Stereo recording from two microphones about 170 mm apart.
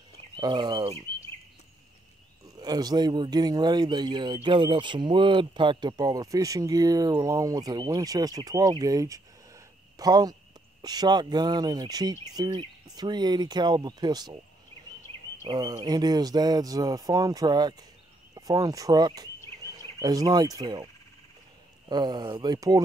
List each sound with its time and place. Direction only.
0.4 s speech: 25° right (ahead or behind)
2.4 s speech: 25° right (ahead or behind)
15.4 s speech: 25° right (ahead or behind)